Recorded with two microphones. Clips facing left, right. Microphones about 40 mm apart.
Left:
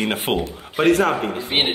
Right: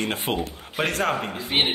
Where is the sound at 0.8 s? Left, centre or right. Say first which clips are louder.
Left 7 dB; centre.